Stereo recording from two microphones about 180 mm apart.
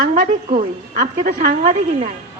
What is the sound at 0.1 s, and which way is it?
A man's voice, 40° right (ahead or behind).